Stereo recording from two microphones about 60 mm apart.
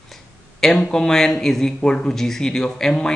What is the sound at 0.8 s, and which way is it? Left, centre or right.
Speech, centre.